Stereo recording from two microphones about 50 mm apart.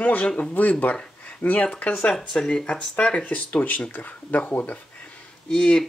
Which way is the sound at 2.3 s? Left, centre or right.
Centre.